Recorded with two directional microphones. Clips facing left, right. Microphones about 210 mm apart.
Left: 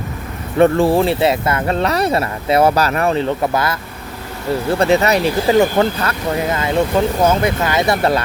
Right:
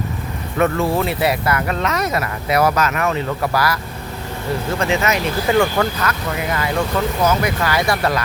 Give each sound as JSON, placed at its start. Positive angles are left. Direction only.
{"t": 0.6, "sound": "speech", "side_deg": 30}
{"t": 4.7, "sound": "speech", "side_deg": 35}